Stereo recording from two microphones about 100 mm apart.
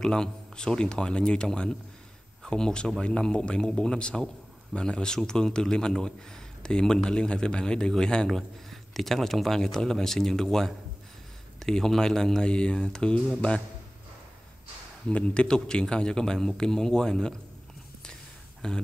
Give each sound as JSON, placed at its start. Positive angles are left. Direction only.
{"t": 0.0, "sound": "a man's voice", "side_deg": 5}
{"t": 15.0, "sound": "a man's voice", "side_deg": 10}
{"t": 18.6, "sound": "a man's voice", "side_deg": 5}